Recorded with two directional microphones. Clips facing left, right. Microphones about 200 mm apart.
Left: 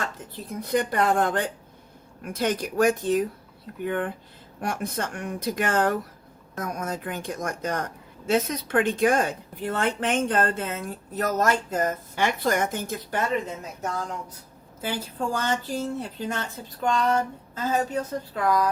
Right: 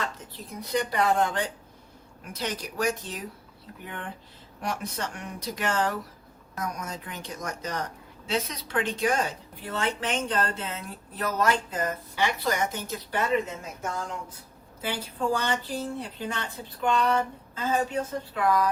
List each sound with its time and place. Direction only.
0.6 s a woman's voice: 50° left (ahead or behind)
14.8 s a woman's voice: 45° left (ahead or behind)